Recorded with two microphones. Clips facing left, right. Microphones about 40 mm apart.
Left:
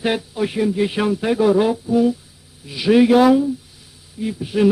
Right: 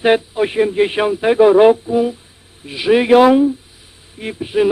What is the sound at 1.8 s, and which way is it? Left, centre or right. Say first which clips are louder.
Speech: even; right.